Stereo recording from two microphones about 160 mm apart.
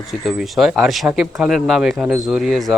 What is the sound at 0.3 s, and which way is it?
Speech, centre (ahead or behind).